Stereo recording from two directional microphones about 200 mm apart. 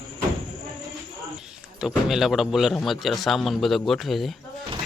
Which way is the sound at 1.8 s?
Centre (ahead or behind).